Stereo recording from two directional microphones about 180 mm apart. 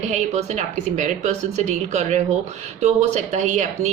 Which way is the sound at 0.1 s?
40° right (ahead or behind).